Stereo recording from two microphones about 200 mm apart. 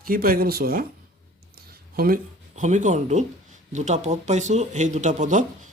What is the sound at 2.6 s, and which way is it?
Speech, 35° right (ahead or behind).